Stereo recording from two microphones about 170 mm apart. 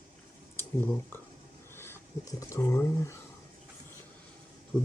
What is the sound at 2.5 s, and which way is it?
Speech, 15° left (ahead or behind).